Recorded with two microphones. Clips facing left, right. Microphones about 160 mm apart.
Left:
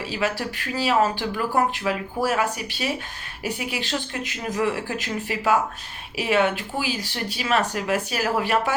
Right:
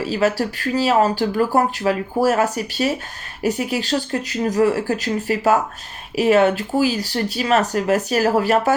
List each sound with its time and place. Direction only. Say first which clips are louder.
0.1 s speech: right 7 dB; 40° right (ahead or behind)